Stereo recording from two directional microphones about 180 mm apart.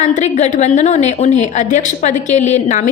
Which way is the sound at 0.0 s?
40° left (ahead or behind).